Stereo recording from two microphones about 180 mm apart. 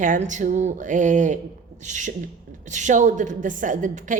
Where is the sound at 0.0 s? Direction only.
45° right (ahead or behind).